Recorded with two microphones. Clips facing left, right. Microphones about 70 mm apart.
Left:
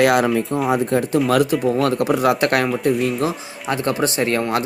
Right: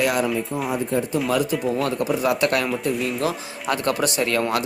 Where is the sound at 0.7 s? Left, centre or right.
Left.